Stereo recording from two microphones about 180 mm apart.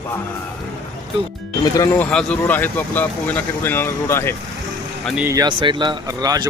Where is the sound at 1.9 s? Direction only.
5° left (ahead or behind).